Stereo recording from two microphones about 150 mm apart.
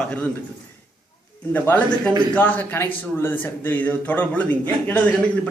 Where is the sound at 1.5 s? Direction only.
10° left (ahead or behind).